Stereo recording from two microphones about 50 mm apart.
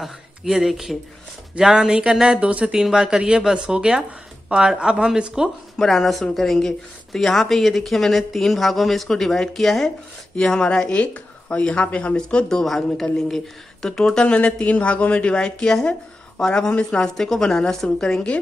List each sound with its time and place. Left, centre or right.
0.0 s speech: centre
5.8 s speech: centre
10.4 s speech: centre
14.2 s speech: left
15.3 s speech: centre